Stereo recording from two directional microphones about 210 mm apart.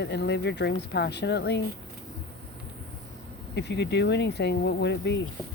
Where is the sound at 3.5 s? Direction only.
55° left (ahead or behind).